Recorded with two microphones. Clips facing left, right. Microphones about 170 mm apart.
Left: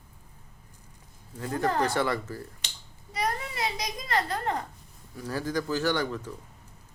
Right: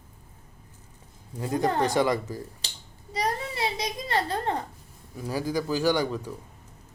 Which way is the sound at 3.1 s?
30° right (ahead or behind).